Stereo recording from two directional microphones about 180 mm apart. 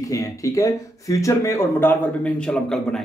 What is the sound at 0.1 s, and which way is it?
Speech, 20° left (ahead or behind).